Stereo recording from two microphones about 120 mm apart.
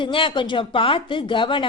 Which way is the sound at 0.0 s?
45° left (ahead or behind).